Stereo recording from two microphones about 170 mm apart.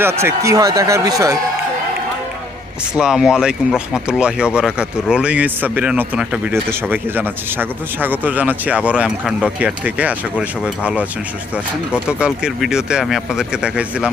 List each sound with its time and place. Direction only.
0.0 s speech: 15° right (ahead or behind)
3.0 s speech: 5° right (ahead or behind)
12.0 s speech: 5° right (ahead or behind)